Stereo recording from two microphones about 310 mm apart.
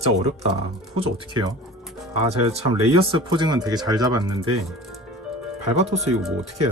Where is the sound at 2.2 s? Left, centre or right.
Centre.